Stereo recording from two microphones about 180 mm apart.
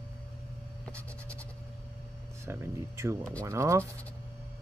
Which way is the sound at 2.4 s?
15° right (ahead or behind).